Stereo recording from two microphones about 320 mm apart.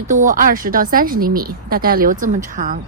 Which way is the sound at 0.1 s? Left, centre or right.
Right.